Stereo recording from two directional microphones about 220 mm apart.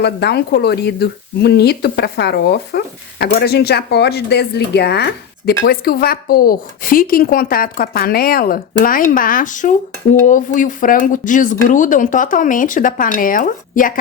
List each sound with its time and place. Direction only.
0.0 s a woman's voice: 50° left (ahead or behind)